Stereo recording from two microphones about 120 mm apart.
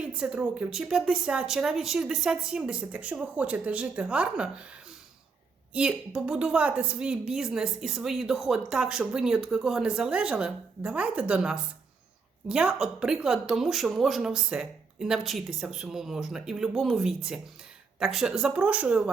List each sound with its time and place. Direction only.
0.0 s a woman's voice: 10° right (ahead or behind)
5.7 s a woman's voice: 10° right (ahead or behind)